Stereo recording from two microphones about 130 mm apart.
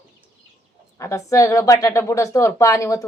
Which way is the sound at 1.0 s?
25° left (ahead or behind).